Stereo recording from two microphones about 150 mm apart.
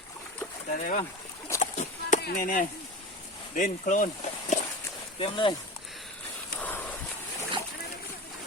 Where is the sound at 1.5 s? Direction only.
55° left (ahead or behind).